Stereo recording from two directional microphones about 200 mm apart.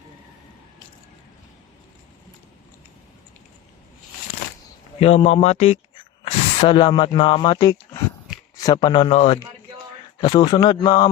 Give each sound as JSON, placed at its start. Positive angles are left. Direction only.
{"t": 4.9, "sound": "speech", "side_deg": 30}